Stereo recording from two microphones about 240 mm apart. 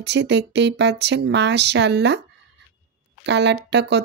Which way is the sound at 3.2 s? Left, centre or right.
Right.